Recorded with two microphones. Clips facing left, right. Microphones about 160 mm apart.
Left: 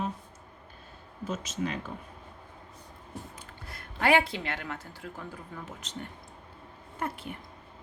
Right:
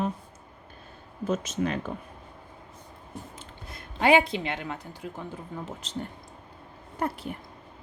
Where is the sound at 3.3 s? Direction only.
20° right (ahead or behind).